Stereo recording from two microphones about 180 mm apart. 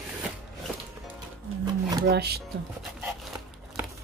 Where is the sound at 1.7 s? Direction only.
20° right (ahead or behind).